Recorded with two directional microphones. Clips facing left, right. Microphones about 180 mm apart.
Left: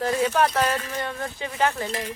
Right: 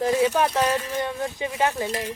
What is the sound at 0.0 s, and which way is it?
Speech, 15° right (ahead or behind).